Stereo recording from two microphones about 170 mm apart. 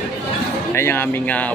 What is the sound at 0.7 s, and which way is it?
Speech, 15° left (ahead or behind).